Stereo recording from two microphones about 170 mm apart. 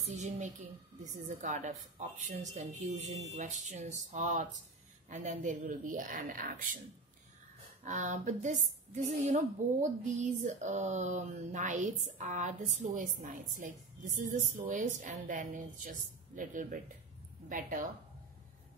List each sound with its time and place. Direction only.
0.0 s a sound: 45° right (ahead or behind)
1.4 s a woman's voice: 45° right (ahead or behind)
7.8 s a woman's voice: 45° right (ahead or behind)